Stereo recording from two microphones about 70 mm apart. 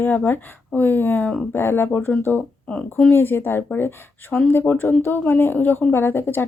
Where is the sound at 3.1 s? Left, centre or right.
Left.